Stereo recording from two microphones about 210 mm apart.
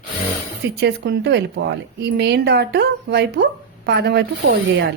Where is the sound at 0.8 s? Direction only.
50° right (ahead or behind).